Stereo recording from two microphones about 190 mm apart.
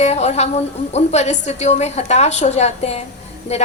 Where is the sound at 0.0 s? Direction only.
35° left (ahead or behind).